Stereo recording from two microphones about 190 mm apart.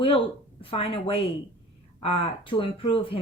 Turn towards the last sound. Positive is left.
turn(degrees=30)  # may be behind; listen again after turning